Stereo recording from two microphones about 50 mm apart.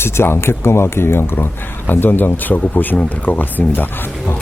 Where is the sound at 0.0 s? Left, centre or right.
Left.